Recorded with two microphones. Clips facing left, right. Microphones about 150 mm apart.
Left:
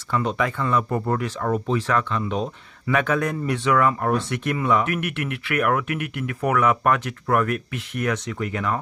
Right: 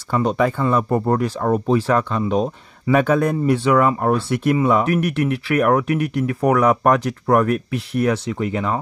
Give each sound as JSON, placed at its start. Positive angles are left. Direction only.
{"t": 0.1, "sound": "speech", "side_deg": -35}